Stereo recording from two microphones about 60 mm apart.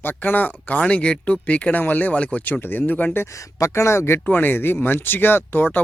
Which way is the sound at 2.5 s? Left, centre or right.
Left.